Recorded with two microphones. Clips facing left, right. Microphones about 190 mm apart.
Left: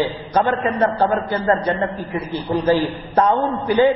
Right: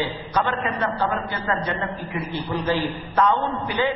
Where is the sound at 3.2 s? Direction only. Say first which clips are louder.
Left 4 dB; 40° left (ahead or behind).